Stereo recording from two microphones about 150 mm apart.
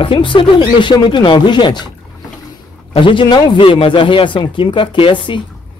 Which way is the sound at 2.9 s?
35° left (ahead or behind).